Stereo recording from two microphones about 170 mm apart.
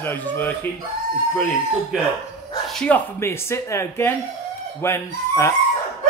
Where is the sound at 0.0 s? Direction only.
10° left (ahead or behind).